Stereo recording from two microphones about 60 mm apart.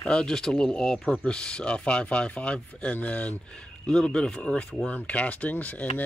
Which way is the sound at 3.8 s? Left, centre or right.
Centre.